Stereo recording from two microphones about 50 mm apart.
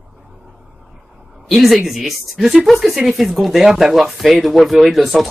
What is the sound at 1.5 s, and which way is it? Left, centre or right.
Speech, centre.